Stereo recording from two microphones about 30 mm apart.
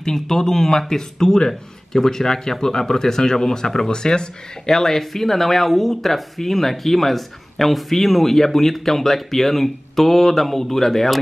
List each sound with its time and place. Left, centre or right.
0.0 s speech: centre
4.6 s speech: centre